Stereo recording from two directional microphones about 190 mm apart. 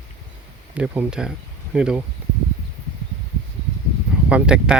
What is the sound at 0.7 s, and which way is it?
Speech, 10° right (ahead or behind).